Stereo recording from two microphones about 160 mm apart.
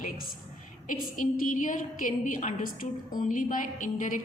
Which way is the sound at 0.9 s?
55° left (ahead or behind).